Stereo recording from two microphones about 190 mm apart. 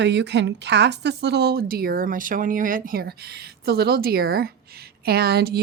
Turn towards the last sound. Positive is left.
turn(degrees=-55)  # may be behind; listen again after turning